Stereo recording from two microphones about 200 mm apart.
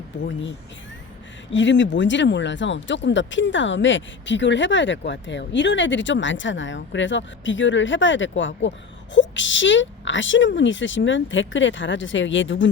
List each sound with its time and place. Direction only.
0.2 s speech: 65° left (ahead or behind)